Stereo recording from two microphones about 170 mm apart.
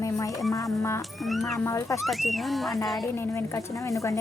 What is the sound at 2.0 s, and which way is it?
Speech, centre (ahead or behind).